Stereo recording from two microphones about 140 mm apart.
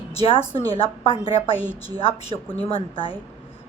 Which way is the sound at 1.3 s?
40° left (ahead or behind).